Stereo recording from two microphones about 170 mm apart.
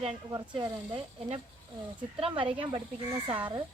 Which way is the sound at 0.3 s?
20° right (ahead or behind).